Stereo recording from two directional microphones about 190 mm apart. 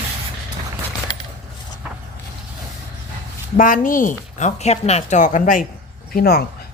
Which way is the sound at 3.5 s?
45° left (ahead or behind).